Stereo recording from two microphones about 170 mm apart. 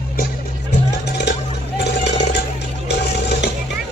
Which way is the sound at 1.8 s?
80° left.